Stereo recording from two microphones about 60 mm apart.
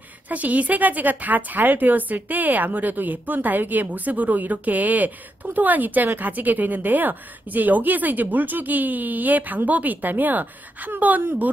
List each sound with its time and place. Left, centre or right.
0.3 s a woman's voice: right